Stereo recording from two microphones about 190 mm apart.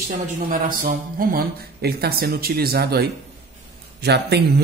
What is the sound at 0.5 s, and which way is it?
Speech, 45° right (ahead or behind).